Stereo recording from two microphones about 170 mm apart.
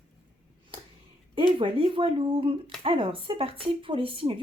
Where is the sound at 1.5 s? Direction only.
30° right (ahead or behind).